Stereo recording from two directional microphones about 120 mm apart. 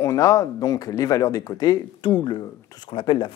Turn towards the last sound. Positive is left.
turn(degrees=40)  # may be behind; listen again after turning